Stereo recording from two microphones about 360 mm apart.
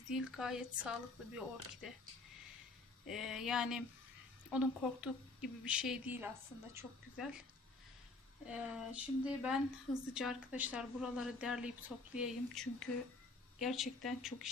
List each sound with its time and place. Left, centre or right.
0.1 s a woman's voice: centre
3.1 s a woman's voice: centre
8.4 s a woman's voice: centre